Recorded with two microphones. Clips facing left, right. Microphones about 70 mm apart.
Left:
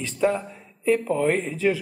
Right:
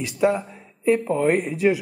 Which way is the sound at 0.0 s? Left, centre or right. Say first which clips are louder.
Right 2 dB; centre.